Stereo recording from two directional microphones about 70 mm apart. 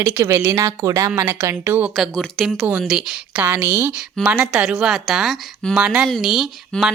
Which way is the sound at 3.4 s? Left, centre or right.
Right.